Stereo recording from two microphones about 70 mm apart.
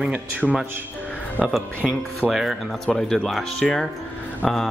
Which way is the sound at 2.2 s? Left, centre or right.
Centre.